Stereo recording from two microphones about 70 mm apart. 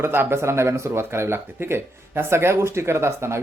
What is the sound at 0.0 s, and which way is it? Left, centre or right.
Speech, right.